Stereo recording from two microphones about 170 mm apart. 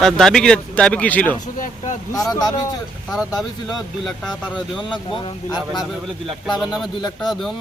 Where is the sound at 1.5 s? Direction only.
50° left (ahead or behind).